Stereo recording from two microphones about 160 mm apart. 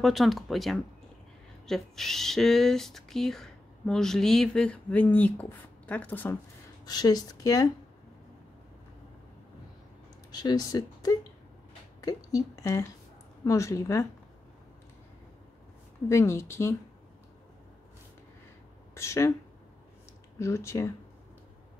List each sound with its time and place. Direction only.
0.0 s speech: centre (ahead or behind)
6.9 s speech: 25° left (ahead or behind)
10.3 s speech: 25° left (ahead or behind)
16.1 s speech: 15° left (ahead or behind)
18.9 s speech: 15° left (ahead or behind)
20.3 s speech: 20° left (ahead or behind)